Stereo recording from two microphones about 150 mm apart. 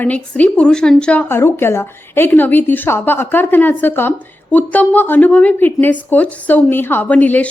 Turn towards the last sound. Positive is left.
turn(degrees=10)  # may be behind; listen again after turning